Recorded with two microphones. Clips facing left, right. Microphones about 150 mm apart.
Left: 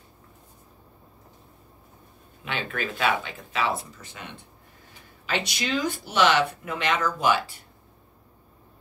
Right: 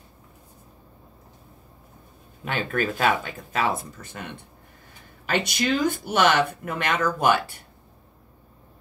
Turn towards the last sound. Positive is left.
turn(degrees=-55)  # may be behind; listen again after turning